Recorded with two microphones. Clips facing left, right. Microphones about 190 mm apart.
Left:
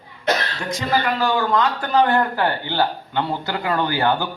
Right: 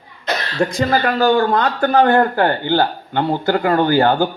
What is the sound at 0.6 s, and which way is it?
A man's voice, 55° right (ahead or behind).